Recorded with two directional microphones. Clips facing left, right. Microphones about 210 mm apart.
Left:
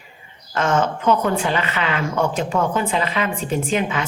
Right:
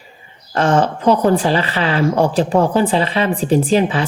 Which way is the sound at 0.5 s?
35° right (ahead or behind).